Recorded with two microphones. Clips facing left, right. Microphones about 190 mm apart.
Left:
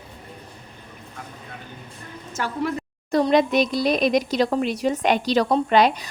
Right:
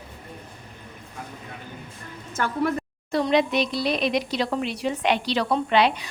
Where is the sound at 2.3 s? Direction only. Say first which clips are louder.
Right 1 dB; 55° right (ahead or behind).